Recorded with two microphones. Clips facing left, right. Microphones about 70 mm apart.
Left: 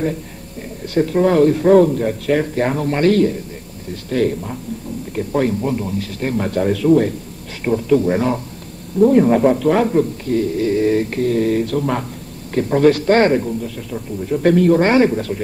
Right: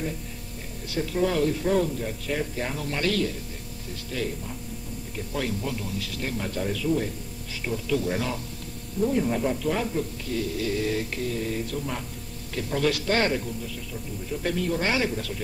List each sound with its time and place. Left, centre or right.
0.8 s speech: left
3.9 s speech: left
5.1 s a man's voice: left
7.6 s a man's voice: left
9.0 s speech: left
12.5 s a man's voice: left
13.9 s speech: left